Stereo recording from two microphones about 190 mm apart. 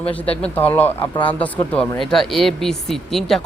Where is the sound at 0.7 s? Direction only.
10° left (ahead or behind).